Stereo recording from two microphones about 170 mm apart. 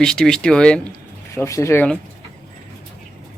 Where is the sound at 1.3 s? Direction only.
15° left (ahead or behind).